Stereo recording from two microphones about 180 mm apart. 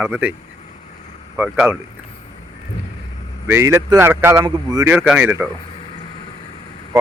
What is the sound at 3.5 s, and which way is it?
A man's voice, 15° right (ahead or behind).